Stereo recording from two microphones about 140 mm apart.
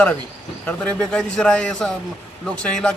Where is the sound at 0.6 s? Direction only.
5° left (ahead or behind).